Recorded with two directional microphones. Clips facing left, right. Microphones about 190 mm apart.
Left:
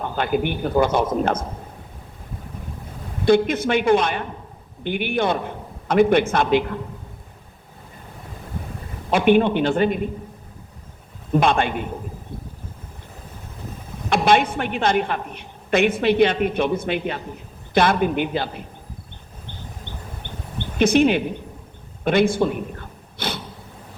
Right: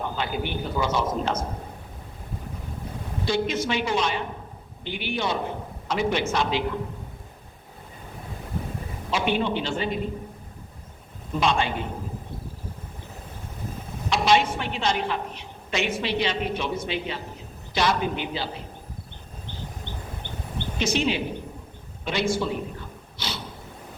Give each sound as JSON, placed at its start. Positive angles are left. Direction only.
{"t": 0.0, "sound": "a woman's voice", "side_deg": 55}
{"t": 3.2, "sound": "a woman's voice", "side_deg": 55}
{"t": 9.0, "sound": "a woman's voice", "side_deg": 55}
{"t": 11.3, "sound": "a woman's voice", "side_deg": 55}
{"t": 14.1, "sound": "a woman's voice", "side_deg": 55}
{"t": 20.7, "sound": "a woman's voice", "side_deg": 55}
{"t": 22.0, "sound": "a sound", "side_deg": 55}